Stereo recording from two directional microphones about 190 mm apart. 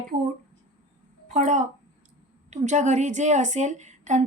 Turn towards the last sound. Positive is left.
turn(degrees=-40)  # may be behind; listen again after turning